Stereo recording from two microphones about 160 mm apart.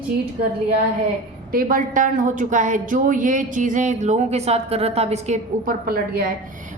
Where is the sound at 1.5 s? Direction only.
60° right (ahead or behind).